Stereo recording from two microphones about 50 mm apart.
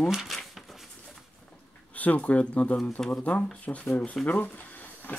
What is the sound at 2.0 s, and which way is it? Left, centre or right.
Speech, left.